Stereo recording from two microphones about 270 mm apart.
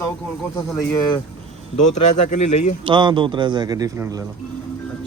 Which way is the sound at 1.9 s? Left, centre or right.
Left.